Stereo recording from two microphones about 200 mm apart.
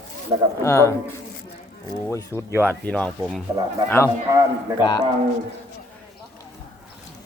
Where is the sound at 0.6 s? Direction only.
15° left (ahead or behind).